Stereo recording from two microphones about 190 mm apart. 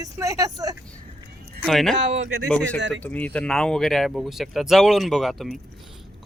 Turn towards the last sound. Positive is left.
turn(degrees=0)  # may be behind; listen again after turning